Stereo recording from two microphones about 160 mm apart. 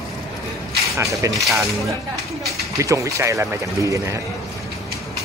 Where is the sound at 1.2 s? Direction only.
20° right (ahead or behind).